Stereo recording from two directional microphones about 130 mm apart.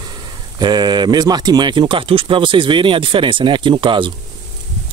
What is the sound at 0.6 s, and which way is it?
Speech, 35° right (ahead or behind).